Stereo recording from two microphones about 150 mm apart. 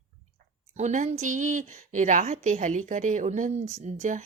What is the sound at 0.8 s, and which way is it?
A woman's voice, 50° right (ahead or behind).